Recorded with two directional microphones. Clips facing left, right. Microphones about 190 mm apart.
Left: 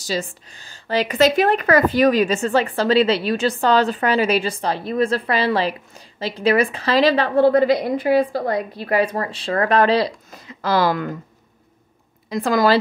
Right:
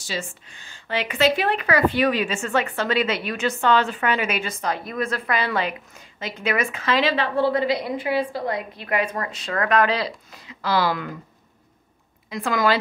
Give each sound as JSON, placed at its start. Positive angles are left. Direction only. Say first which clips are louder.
{"t": 0.0, "sound": "speech", "louder": "left 6 dB", "side_deg": 40}
{"t": 12.3, "sound": "speech", "louder": "left 5 dB", "side_deg": 35}